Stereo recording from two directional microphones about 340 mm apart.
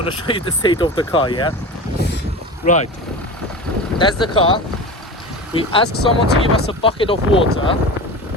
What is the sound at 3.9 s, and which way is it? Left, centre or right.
Speech, centre.